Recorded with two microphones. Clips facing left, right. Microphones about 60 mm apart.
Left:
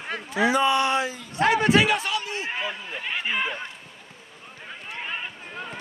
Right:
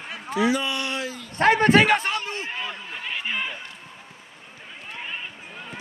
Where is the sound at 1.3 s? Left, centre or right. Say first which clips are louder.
Right 3 dB; right.